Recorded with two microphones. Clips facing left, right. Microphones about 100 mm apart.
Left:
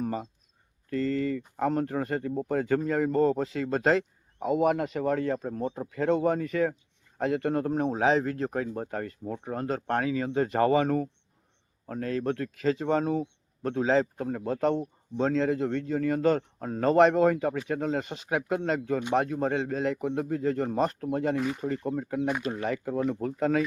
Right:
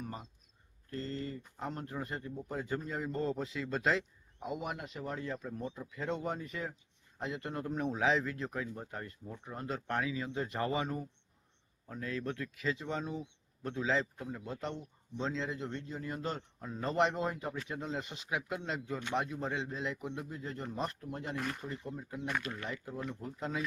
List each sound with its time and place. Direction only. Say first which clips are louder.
0.9 s speech: left 12 dB; 85° left
1.5 s speech: left 13 dB; 70° left (ahead or behind)
7.9 s speech: left 6 dB; 40° left (ahead or behind); by 9.6 s 65° left (ahead or behind)
9.8 s speech: left 6 dB; 55° left (ahead or behind); by 11.1 s 75° left (ahead or behind)
11.9 s speech: left 9 dB; 55° left (ahead or behind)
13.8 s speech: left 9 dB; 50° left (ahead or behind)
17.3 s speech: left 12 dB; 75° left (ahead or behind)
17.7 s speech: left 10 dB; 55° left (ahead or behind); by 21.3 s 85° left
21.3 s speech: left 9 dB; 5° left (ahead or behind)
21.7 s speech: left 12 dB; 65° left (ahead or behind)